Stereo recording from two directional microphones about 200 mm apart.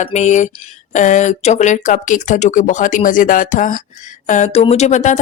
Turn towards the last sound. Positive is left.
turn(degrees=35)  # may be behind; listen again after turning